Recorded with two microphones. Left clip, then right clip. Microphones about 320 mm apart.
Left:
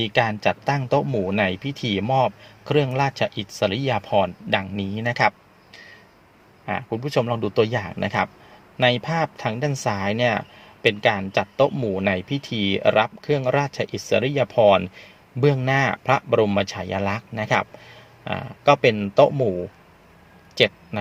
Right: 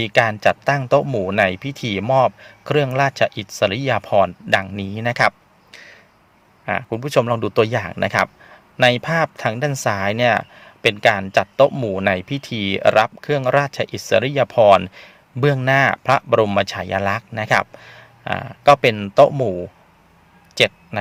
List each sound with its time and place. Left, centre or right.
0.0 s speech: right
5.7 s a sound: right
6.7 s speech: right
20.6 s speech: right